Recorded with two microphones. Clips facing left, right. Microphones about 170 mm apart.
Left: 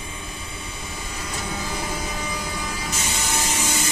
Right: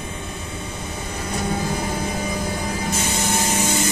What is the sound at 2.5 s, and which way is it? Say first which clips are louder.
Spray: right 5 dB; 45° right (ahead or behind).